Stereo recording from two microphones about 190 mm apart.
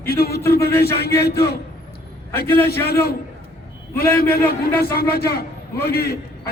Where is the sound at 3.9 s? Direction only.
55° left (ahead or behind).